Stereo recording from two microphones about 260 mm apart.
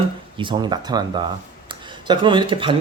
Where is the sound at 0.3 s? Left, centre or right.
Centre.